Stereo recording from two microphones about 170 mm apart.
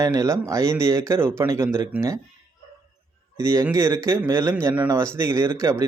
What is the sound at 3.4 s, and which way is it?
Speech, 15° right (ahead or behind).